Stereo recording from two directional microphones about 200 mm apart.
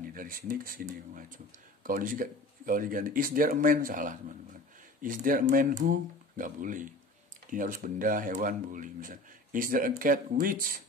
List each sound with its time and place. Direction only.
0.0 s speech: 45° right (ahead or behind)